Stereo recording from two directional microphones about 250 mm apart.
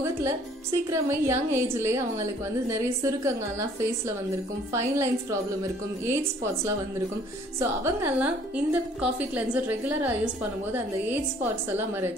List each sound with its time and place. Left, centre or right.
0.0 s a woman's voice: centre
4.7 s a woman's voice: centre